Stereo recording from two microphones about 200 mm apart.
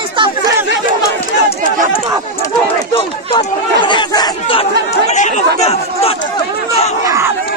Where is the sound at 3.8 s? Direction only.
20° left (ahead or behind).